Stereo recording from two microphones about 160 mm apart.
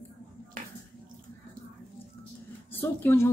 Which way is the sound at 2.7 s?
15° left (ahead or behind).